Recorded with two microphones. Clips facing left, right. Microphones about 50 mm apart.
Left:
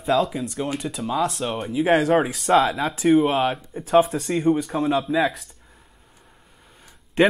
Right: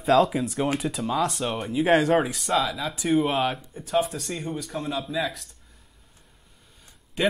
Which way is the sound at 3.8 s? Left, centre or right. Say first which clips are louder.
Left 9 dB; left.